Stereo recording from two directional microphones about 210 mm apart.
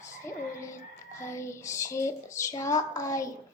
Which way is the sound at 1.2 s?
15° left (ahead or behind).